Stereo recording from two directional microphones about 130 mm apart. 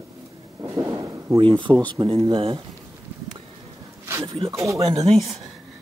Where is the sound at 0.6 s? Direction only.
20° right (ahead or behind).